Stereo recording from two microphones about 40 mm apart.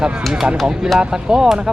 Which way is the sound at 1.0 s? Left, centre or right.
Centre.